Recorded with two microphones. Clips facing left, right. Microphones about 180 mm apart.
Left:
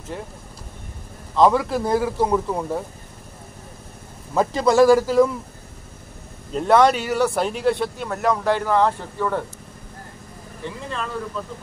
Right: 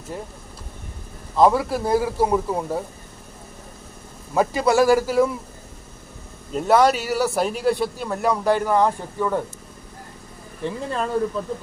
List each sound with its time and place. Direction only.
1.3 s speech: 10° right (ahead or behind)
4.3 s speech: 5° right (ahead or behind)
6.5 s speech: 5° right (ahead or behind)
10.6 s speech: 40° right (ahead or behind)